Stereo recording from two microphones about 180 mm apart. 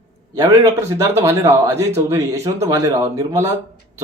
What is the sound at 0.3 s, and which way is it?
A man's voice, 15° right (ahead or behind).